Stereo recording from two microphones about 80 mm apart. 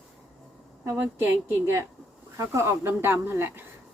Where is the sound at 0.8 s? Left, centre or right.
Right.